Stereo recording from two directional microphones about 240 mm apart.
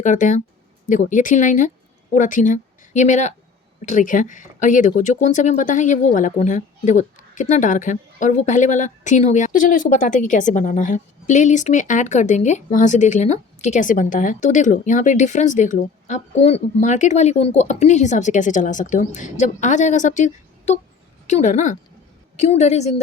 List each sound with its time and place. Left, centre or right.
0.0 s a woman's voice: left